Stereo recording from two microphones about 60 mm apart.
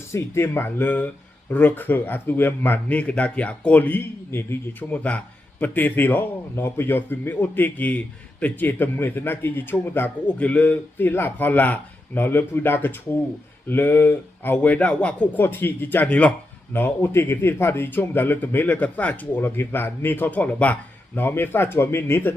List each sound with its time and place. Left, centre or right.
0.1 s a man's voice: left
4.8 s a man's voice: left
10.2 s speech: left
10.9 s a man's voice: left
15.4 s a man's voice: left
16.0 s speech: left
16.7 s a man's voice: left
21.2 s a man's voice: left